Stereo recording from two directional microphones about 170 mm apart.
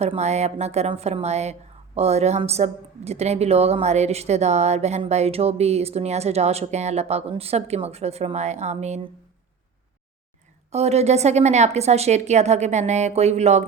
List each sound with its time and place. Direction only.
0.0 s a woman's voice: 40° right (ahead or behind)
10.7 s a woman's voice: 40° right (ahead or behind)